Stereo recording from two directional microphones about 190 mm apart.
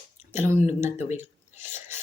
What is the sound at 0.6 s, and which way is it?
Speech, 35° left (ahead or behind).